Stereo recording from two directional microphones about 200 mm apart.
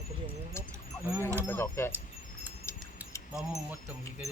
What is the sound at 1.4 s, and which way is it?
Speech, 10° left (ahead or behind).